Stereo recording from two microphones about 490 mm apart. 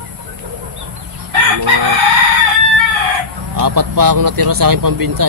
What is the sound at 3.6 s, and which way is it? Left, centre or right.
Speech, right.